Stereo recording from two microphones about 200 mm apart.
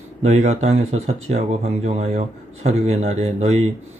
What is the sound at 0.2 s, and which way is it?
Speech, 35° right (ahead or behind).